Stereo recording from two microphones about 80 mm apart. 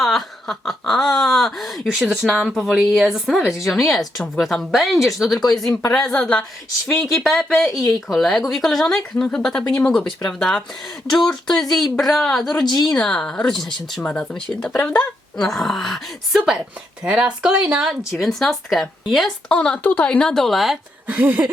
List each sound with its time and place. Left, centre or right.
0.0 s a sound: centre
3.6 s a woman's voice: centre
14.0 s a woman's voice: centre
19.5 s speech: centre
21.1 s speech: centre